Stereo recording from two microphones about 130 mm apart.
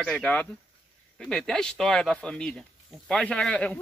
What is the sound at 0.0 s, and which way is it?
Speech, 10° left (ahead or behind).